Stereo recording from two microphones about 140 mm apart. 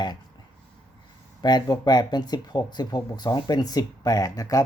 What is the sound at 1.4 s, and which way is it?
Speech, 30° left (ahead or behind).